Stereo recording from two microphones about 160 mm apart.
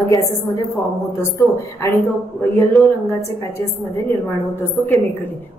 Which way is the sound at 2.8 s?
Centre (ahead or behind).